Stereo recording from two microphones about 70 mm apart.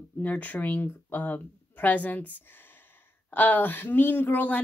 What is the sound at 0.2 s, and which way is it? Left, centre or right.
Speech, left.